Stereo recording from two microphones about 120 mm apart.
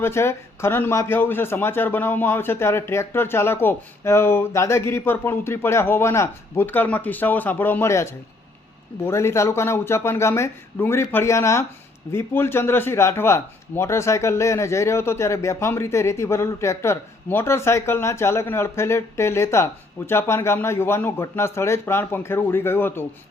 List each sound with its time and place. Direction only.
0.0 s a man's voice: 20° left (ahead or behind)